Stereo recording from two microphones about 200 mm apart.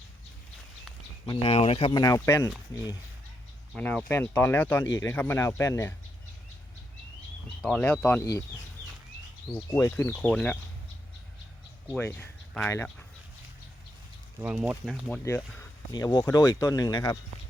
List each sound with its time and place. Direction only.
1.3 s speech: 25° left (ahead or behind)
3.8 s speech: 5° left (ahead or behind)
7.6 s speech: 5° left (ahead or behind)
9.7 s speech: 15° left (ahead or behind)
11.9 s speech: 10° left (ahead or behind)
14.4 s speech: 5° right (ahead or behind)
15.0 s speech: 10° left (ahead or behind)